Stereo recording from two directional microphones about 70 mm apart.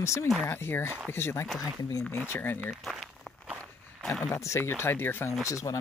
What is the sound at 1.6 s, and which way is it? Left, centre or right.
Speech, left.